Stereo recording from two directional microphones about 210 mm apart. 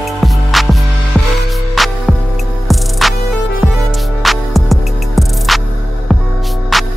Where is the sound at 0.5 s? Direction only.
Centre (ahead or behind).